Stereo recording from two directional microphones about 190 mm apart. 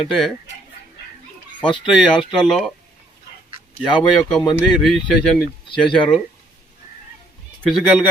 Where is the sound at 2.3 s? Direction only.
Centre (ahead or behind).